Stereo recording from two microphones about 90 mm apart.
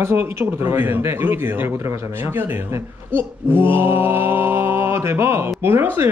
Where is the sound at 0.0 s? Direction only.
30° right (ahead or behind).